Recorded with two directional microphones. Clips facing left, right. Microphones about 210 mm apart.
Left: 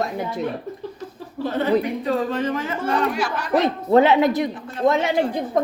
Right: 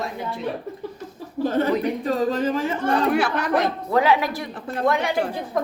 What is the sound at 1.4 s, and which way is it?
A woman's voice, 45° right (ahead or behind).